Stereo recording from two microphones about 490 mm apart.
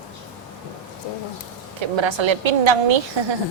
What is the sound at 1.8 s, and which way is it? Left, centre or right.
A woman's voice, right.